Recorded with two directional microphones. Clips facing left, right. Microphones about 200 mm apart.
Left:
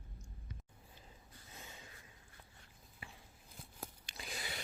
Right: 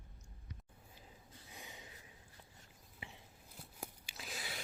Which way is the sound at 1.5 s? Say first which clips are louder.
Right 1 dB; 15° right (ahead or behind).